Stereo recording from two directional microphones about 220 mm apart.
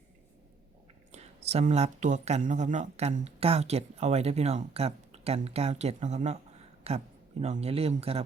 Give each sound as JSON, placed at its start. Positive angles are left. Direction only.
{"t": 1.1, "sound": "speech", "side_deg": -30}